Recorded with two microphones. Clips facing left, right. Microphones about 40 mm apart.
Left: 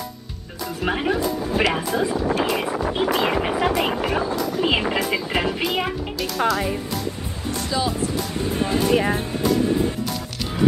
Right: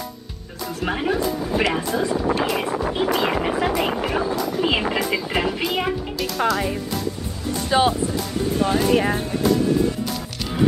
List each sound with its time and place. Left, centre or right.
0.8 s speech: centre
7.7 s speech: right
8.7 s speech: centre